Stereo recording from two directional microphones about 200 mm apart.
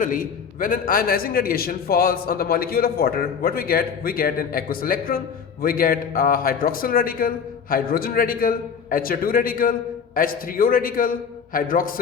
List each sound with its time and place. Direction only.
0.0 s a man's voice: 40° left (ahead or behind)